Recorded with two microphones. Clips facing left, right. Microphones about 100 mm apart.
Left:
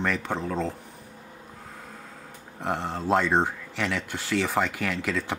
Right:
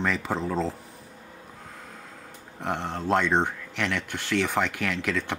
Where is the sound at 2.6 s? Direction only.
Centre (ahead or behind).